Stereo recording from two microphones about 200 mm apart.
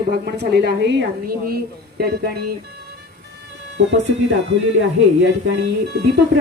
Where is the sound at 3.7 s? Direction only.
65° right (ahead or behind).